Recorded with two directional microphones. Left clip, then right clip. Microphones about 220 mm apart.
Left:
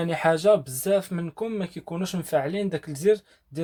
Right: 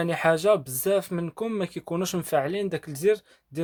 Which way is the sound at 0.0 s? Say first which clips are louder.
Left 1 dB; 25° right (ahead or behind).